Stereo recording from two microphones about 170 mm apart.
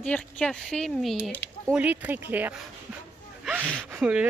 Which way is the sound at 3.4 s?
10° right (ahead or behind).